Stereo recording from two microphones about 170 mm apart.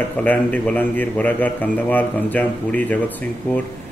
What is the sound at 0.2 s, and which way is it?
Speech, 10° left (ahead or behind).